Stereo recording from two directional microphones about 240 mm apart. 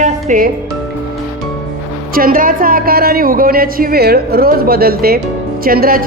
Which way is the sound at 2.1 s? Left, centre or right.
Right.